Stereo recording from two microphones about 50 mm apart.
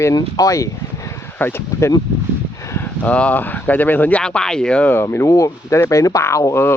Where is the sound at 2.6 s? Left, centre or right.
Left.